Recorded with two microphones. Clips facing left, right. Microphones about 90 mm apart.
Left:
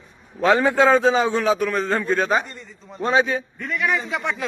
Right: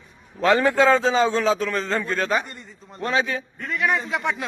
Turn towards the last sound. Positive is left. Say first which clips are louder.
# even
turn(degrees=0)  # may be behind; listen again after turning